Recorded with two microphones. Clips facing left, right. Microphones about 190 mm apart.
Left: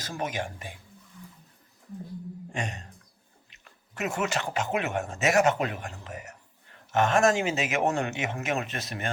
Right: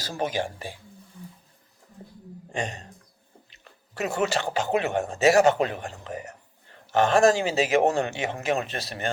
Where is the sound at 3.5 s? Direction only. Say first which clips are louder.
Even; 35° right (ahead or behind).